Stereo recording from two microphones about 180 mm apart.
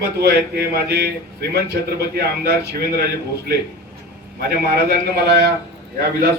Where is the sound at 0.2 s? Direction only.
60° right (ahead or behind).